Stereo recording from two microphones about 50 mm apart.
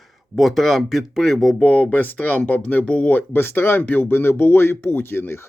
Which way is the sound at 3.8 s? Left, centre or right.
Left.